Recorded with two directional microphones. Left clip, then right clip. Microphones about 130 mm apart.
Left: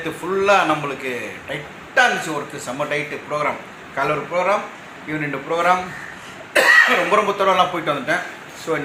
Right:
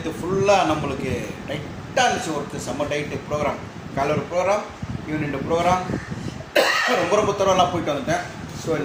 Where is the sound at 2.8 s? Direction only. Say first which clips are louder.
Left 2 dB; centre (ahead or behind).